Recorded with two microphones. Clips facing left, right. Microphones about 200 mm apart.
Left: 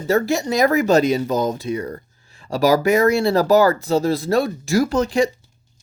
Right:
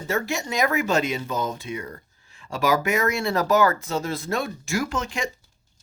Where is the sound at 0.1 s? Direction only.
35° left (ahead or behind).